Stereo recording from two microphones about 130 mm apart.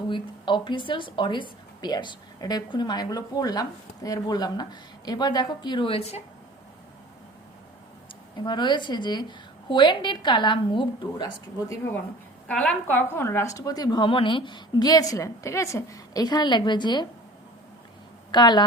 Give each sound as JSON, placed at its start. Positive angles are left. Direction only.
{"t": 0.1, "sound": "a woman's voice", "side_deg": 40}
{"t": 8.4, "sound": "a woman's voice", "side_deg": 35}
{"t": 12.5, "sound": "a woman's voice", "side_deg": 10}
{"t": 18.3, "sound": "a woman's voice", "side_deg": 35}